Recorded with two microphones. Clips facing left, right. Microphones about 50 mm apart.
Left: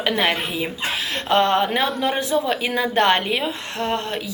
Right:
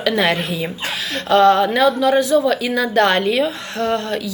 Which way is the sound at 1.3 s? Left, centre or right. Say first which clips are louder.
Right 5 dB; left.